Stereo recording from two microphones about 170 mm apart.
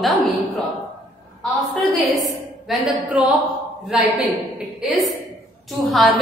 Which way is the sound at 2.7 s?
Centre (ahead or behind).